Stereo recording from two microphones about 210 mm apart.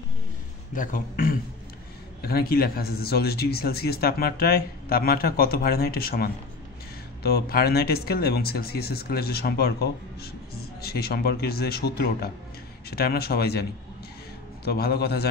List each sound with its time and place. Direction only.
0.7 s speech: 40° left (ahead or behind)